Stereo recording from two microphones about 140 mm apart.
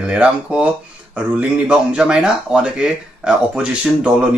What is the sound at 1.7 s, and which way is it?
Speech, 5° right (ahead or behind).